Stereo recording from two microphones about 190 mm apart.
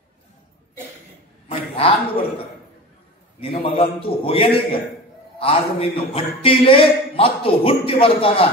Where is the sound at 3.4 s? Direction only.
30° left (ahead or behind).